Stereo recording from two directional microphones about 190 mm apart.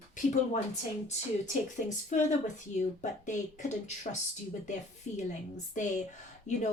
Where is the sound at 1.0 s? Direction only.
40° left (ahead or behind).